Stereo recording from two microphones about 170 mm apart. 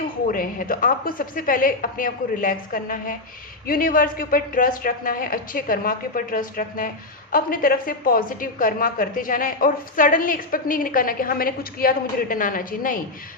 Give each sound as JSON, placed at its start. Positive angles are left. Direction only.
{"t": 0.3, "sound": "speech", "side_deg": 55}